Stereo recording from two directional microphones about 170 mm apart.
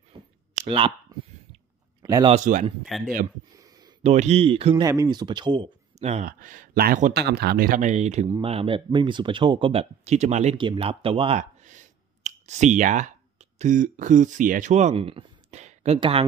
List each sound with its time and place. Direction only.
0.6 s speech: 30° right (ahead or behind)
2.0 s speech: 20° right (ahead or behind)
2.3 s a man's voice: 50° right (ahead or behind)
2.8 s speech: centre (ahead or behind)
3.5 s a sound: 20° right (ahead or behind)
4.0 s speech: 40° right (ahead or behind)
4.8 s speech: 20° right (ahead or behind); by 6.2 s 40° right (ahead or behind)
6.2 s a man's voice: 50° right (ahead or behind)
7.2 s speech: 70° right (ahead or behind); by 16.3 s 35° right (ahead or behind)